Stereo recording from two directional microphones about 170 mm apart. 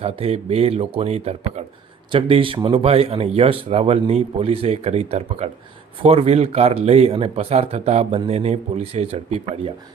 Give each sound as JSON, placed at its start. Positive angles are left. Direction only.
{"t": 0.0, "sound": "speech", "side_deg": -35}